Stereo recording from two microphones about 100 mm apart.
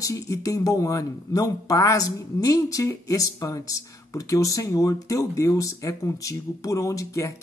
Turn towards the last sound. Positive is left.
turn(degrees=30)  # may be behind; listen again after turning